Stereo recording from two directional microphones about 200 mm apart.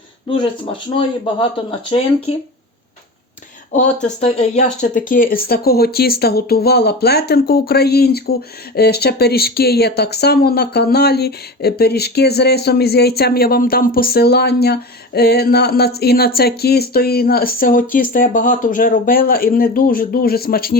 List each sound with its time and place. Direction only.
0.3 s speech: 25° left (ahead or behind)
3.7 s speech: 35° left (ahead or behind)